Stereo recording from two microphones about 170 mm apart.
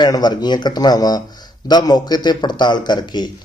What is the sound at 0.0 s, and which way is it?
Speech, 25° left (ahead or behind).